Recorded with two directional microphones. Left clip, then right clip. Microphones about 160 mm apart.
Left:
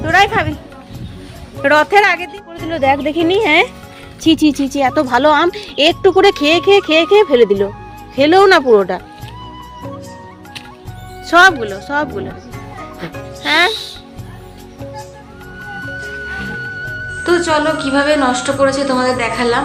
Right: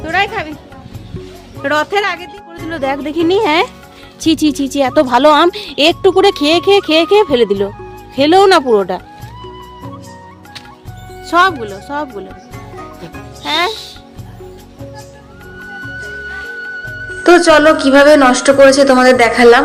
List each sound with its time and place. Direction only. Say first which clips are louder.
0.1 s a woman's voice: left 4 dB; 20° left (ahead or behind)
1.6 s speech: left 4 dB; 10° left (ahead or behind)
2.6 s a woman's voice: left 4 dB; 20° right (ahead or behind)
11.3 s speech: left 3 dB; centre (ahead or behind)
12.7 s music: left 2 dB; centre (ahead or behind)
15.8 s music: even; centre (ahead or behind)
17.2 s speech: right 7 dB; 40° right (ahead or behind)